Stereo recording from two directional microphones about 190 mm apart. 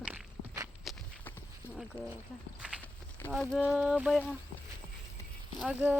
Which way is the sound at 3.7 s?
5° right (ahead or behind).